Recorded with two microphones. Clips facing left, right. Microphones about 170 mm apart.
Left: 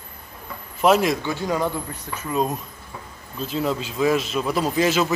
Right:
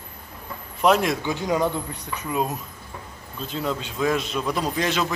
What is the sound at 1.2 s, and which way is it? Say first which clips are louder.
Speech: right 1 dB; 15° right (ahead or behind).